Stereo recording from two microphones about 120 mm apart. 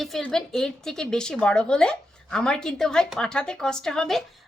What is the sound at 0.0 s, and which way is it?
A woman's voice, 5° left (ahead or behind).